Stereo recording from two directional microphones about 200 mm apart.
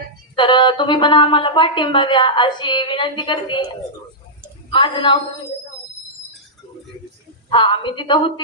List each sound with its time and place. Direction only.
0.3 s a woman's voice: 25° left (ahead or behind)
4.7 s a woman's voice: 25° left (ahead or behind)
7.5 s a woman's voice: 25° left (ahead or behind)